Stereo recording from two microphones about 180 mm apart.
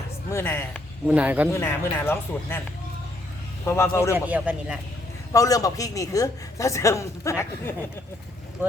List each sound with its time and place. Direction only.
0.3 s a man's voice: 15° left (ahead or behind)
1.0 s a man's voice: 5° right (ahead or behind)
1.5 s a man's voice: 15° left (ahead or behind)
3.7 s a man's voice: 15° left (ahead or behind)
4.1 s a man's voice: 10° right (ahead or behind)
5.3 s a man's voice: 20° left (ahead or behind)